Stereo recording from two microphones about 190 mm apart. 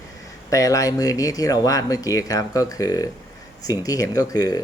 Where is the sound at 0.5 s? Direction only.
20° left (ahead or behind).